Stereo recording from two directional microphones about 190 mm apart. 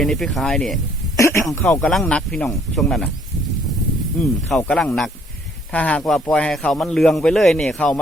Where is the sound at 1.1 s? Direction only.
15° left (ahead or behind).